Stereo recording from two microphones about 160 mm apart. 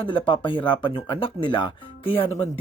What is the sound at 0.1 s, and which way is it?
Speech, 30° left (ahead or behind).